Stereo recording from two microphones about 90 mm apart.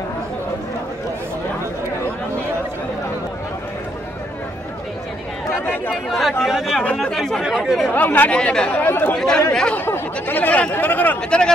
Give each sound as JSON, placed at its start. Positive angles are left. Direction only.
{"t": 6.0, "sound": "speech", "side_deg": 0}
{"t": 6.8, "sound": "speech", "side_deg": 10}
{"t": 7.9, "sound": "speech", "side_deg": 20}
{"t": 9.1, "sound": "speech", "side_deg": 10}
{"t": 9.8, "sound": "speech", "side_deg": 25}